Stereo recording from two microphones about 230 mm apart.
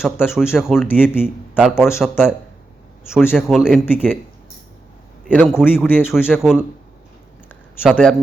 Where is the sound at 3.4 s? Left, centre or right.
Centre.